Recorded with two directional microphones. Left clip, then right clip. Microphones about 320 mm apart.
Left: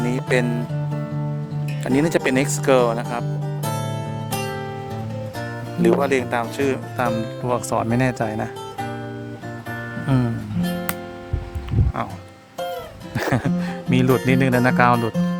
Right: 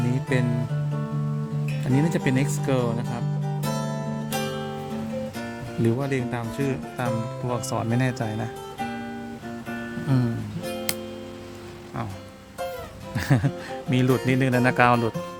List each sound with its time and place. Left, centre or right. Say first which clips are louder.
0.0 s music: left 6 dB; left
2.0 s speech: left 7 dB; left
5.8 s speech: left 8 dB; left
13.1 s speech: left 4 dB; centre